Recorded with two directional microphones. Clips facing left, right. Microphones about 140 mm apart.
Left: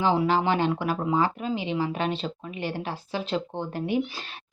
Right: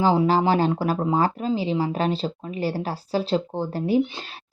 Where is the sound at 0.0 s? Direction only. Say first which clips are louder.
Right 4 dB; 35° right (ahead or behind).